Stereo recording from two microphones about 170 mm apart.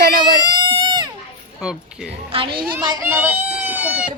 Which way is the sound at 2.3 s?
30° right (ahead or behind).